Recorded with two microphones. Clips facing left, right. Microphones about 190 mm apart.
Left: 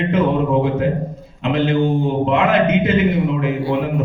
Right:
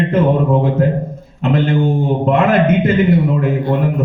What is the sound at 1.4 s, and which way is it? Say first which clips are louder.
A man's voice: right 2 dB; 45° right (ahead or behind).